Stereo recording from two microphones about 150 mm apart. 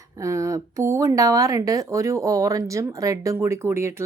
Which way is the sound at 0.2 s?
20° right (ahead or behind).